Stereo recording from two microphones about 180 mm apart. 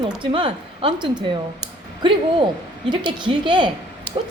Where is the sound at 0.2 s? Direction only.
30° right (ahead or behind).